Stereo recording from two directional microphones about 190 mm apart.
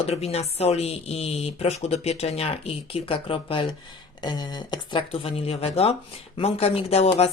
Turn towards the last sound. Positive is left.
turn(degrees=30)  # may be behind; listen again after turning